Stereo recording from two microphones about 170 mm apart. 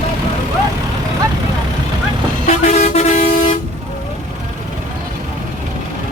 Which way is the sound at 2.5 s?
45° left (ahead or behind).